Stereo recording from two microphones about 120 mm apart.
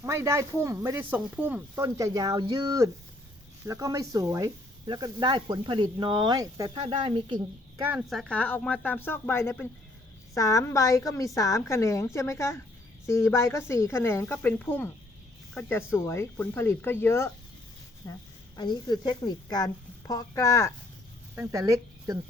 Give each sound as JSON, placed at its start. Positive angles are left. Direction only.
{"t": 0.0, "sound": "speech", "side_deg": -25}
{"t": 6.7, "sound": "speech", "side_deg": -45}
{"t": 7.9, "sound": "a woman's voice", "side_deg": 0}
{"t": 8.4, "sound": "a woman's voice", "side_deg": 10}
{"t": 18.0, "sound": "speech", "side_deg": 35}
{"t": 21.3, "sound": "speech", "side_deg": -25}